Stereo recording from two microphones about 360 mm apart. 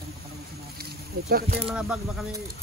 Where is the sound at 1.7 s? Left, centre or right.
Centre.